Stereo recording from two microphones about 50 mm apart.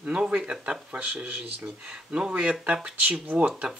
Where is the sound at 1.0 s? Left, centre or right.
Right.